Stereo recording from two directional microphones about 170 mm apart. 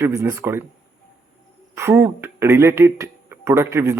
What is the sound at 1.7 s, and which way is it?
Speech, 15° right (ahead or behind).